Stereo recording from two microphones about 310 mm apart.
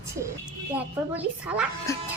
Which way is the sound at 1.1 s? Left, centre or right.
Centre.